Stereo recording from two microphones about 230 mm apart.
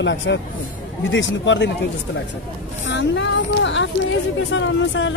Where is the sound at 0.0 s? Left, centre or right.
Left.